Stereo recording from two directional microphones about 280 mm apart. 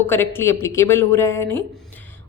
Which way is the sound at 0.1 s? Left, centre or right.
Centre.